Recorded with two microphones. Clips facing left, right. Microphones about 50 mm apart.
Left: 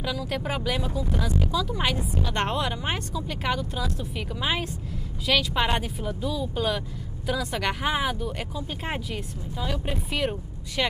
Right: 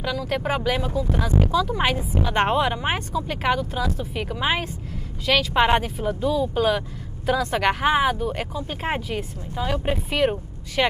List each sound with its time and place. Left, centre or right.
0.0 s speech: centre
5.2 s speech: centre
5.5 s speech: right